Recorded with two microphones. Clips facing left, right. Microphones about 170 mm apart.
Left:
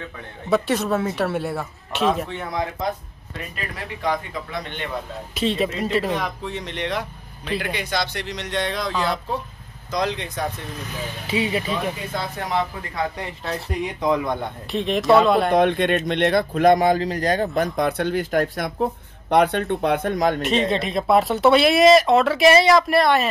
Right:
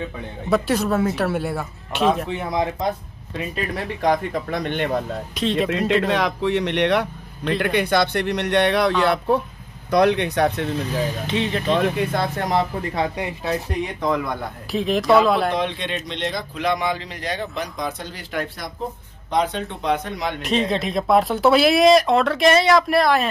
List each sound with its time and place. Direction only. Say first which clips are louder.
0.5 s speech: right 1 dB; centre (ahead or behind)
2.3 s speech: right 4 dB; 15° right (ahead or behind)
4.0 s a man's voice: right 5 dB; 45° right (ahead or behind)
5.3 s speech: even; centre (ahead or behind)
6.0 s speech: right 5 dB; 90° right; by 10.7 s 70° right (ahead or behind)
11.2 s speech: even; 5° left (ahead or behind)
11.6 s speech: right 6 dB; 60° right (ahead or behind)
12.9 s speech: right 1 dB; 15° right (ahead or behind)
14.0 s speech: left 2 dB; 15° left (ahead or behind)
14.7 s speech: even; centre (ahead or behind)
15.5 s speech: left 7 dB; 50° left (ahead or behind)
17.7 s speech: left 8 dB; 65° left (ahead or behind)
19.3 s speech: left 4 dB; 60° left (ahead or behind); by 20.4 s 45° left (ahead or behind)
20.4 s speech: even; centre (ahead or behind)